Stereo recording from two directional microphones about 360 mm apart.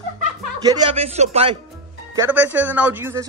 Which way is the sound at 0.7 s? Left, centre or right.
Centre.